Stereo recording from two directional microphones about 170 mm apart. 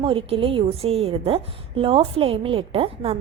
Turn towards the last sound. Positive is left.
turn(degrees=-35)  # may be behind; listen again after turning